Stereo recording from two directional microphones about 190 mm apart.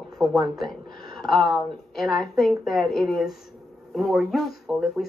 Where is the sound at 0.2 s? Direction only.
Centre (ahead or behind).